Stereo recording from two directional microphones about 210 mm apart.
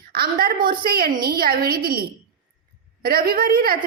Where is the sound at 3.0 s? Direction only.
45° right (ahead or behind).